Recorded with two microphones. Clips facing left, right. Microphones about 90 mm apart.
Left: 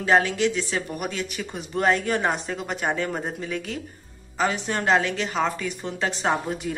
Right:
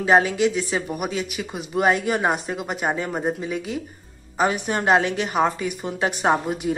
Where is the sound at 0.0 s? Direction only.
15° right (ahead or behind).